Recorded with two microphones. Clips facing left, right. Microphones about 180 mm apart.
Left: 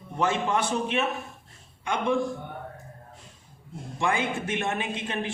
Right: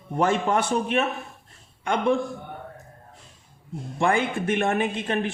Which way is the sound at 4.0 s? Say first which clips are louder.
Right 4 dB; 55° right (ahead or behind).